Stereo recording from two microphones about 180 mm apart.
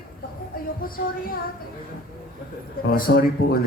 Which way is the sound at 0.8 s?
55° left (ahead or behind).